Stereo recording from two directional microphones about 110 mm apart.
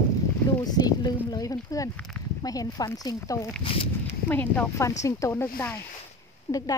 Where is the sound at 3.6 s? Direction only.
50° left (ahead or behind).